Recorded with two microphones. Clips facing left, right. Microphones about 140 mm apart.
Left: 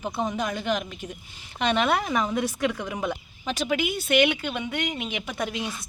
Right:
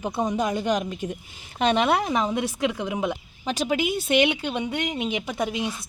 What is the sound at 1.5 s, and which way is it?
A woman's voice, 35° right (ahead or behind).